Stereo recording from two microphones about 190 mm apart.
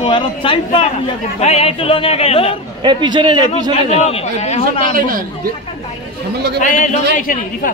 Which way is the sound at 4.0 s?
35° left (ahead or behind).